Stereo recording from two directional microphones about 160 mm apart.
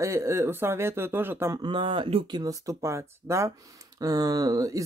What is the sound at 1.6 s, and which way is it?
Speech, 30° right (ahead or behind).